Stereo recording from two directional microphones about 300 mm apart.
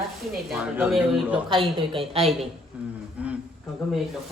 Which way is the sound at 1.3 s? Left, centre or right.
Centre.